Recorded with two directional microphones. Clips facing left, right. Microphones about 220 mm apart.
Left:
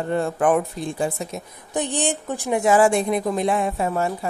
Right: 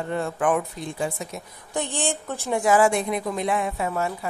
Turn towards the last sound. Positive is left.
turn(degrees=35)  # may be behind; listen again after turning